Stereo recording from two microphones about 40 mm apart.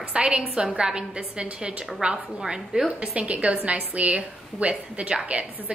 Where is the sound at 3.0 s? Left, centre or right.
Right.